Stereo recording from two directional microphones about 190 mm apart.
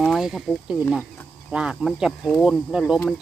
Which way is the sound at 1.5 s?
5° right (ahead or behind).